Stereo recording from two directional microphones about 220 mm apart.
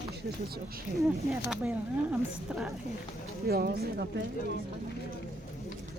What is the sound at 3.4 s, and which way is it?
Speech, 45° right (ahead or behind).